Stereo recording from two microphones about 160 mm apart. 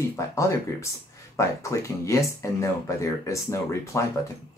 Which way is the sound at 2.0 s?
20° left (ahead or behind).